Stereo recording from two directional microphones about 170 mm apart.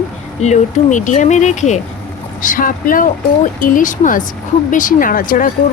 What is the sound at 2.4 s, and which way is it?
A woman's voice, 55° left (ahead or behind).